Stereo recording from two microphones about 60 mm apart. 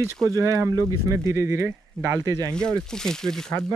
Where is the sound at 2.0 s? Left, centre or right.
Right.